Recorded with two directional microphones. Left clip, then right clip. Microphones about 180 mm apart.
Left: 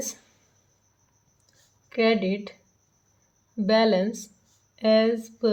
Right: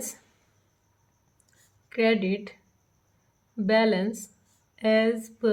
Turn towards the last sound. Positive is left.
turn(degrees=10)  # may be behind; listen again after turning